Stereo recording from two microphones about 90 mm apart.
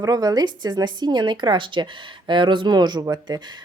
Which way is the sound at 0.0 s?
45° right (ahead or behind).